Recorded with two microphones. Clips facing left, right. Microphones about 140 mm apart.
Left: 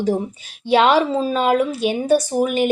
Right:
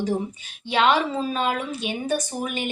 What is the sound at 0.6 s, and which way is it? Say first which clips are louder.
Speech: left 6 dB; 40° left (ahead or behind).